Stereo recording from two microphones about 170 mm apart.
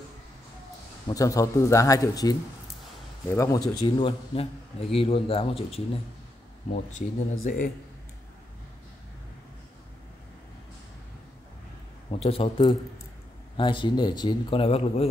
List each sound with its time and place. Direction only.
1.0 s speech: 20° left (ahead or behind)
3.3 s speech: 15° left (ahead or behind)
3.8 s a man's voice: 35° left (ahead or behind)
6.7 s speech: 45° left (ahead or behind)
12.1 s a man's voice: 35° left (ahead or behind)